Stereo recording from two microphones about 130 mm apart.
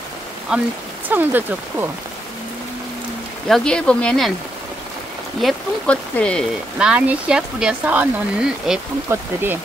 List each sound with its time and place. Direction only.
1.0 s speech: 15° right (ahead or behind)
3.4 s speech: 5° left (ahead or behind)
5.4 s speech: centre (ahead or behind)
6.8 s speech: 5° right (ahead or behind)
9.1 s speech: 15° right (ahead or behind)